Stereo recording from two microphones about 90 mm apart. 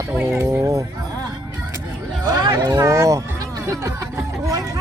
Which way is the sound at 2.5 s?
35° right (ahead or behind).